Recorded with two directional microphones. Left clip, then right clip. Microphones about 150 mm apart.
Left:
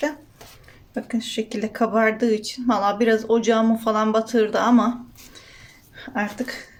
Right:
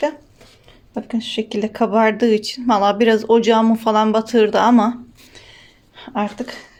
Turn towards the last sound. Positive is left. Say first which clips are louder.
# right 4 dB
turn(degrees=-40)  # may be behind; listen again after turning